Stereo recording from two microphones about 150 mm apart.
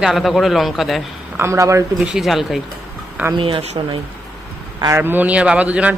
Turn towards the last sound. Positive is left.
turn(degrees=-10)  # may be behind; listen again after turning